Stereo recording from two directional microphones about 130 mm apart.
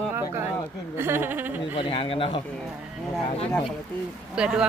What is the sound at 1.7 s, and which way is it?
Speech, 45° left (ahead or behind).